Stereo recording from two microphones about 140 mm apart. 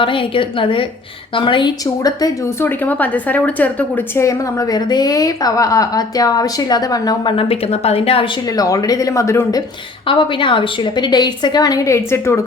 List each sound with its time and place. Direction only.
0.0 s a woman's voice: 40° left (ahead or behind)
7.3 s a woman's voice: 40° left (ahead or behind)
8.4 s a woman's voice: 25° left (ahead or behind)
10.1 s a woman's voice: 35° left (ahead or behind); by 12.4 s 20° left (ahead or behind)